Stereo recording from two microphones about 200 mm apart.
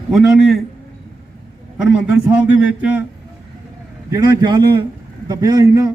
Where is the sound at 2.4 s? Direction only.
10° right (ahead or behind).